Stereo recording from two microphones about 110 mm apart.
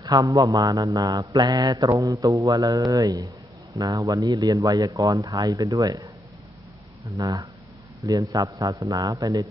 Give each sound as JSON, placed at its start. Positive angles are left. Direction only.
{"t": 0.0, "sound": "speech", "side_deg": -35}
{"t": 7.2, "sound": "speech", "side_deg": -30}